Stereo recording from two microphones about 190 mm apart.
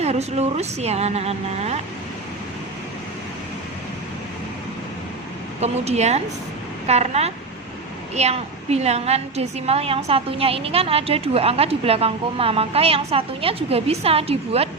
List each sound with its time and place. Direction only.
0.0 s a woman's voice: 35° right (ahead or behind)
5.5 s a woman's voice: 35° right (ahead or behind)